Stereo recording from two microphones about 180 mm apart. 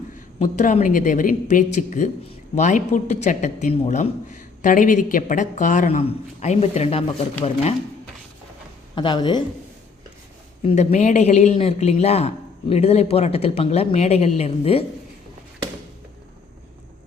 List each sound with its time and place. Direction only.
0.3 s a man's voice: 45° left (ahead or behind)
9.0 s speech: 25° left (ahead or behind)
10.7 s a man's voice: 40° left (ahead or behind)